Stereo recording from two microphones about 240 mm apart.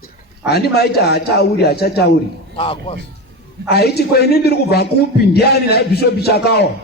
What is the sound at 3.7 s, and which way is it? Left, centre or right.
A man's voice, left.